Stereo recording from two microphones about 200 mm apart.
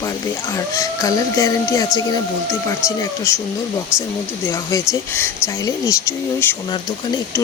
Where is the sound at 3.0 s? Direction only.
15° left (ahead or behind).